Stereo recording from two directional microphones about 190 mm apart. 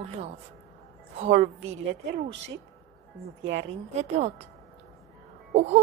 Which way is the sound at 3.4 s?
65° right (ahead or behind).